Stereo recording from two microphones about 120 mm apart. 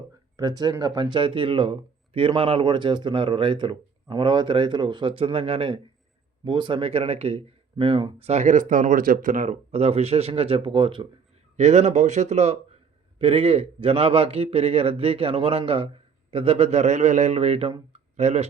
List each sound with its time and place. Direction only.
0.3 s a man's voice: 35° right (ahead or behind)
8.3 s speech: 80° right; by 11.1 s 45° right (ahead or behind)
11.5 s speech: 70° right (ahead or behind)
13.1 s a man's voice: 50° right (ahead or behind)